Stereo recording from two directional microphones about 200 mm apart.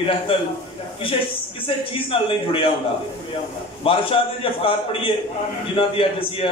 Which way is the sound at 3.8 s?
25° left (ahead or behind).